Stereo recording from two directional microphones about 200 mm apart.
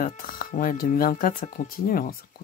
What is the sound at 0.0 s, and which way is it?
Speech, 45° left (ahead or behind).